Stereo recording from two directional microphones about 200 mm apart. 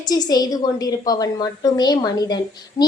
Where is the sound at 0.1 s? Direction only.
20° left (ahead or behind).